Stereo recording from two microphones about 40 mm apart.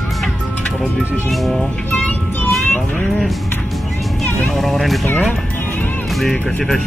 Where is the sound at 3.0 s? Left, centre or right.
Centre.